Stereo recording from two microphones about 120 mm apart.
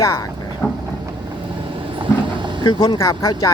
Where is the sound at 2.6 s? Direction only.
40° left (ahead or behind).